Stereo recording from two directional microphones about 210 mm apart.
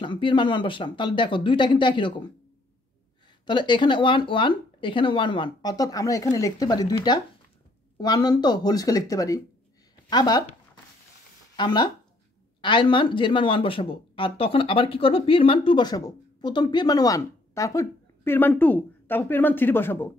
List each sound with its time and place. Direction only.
0.0 s speech: 25° left (ahead or behind)
3.4 s speech: 20° left (ahead or behind)
11.5 s speech: 20° left (ahead or behind)